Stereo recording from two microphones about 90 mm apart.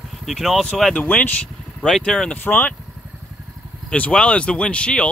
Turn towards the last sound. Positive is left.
turn(degrees=10)  # may be behind; listen again after turning